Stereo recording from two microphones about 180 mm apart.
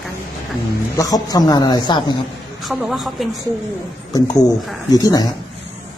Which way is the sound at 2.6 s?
Centre (ahead or behind).